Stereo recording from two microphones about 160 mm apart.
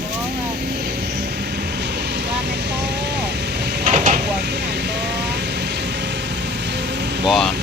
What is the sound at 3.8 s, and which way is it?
Vehicle, 50° right (ahead or behind).